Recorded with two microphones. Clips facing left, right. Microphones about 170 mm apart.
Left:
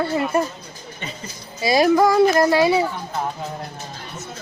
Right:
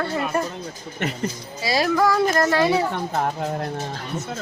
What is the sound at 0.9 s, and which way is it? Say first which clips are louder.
Speech: right 9 dB; 75° right (ahead or behind).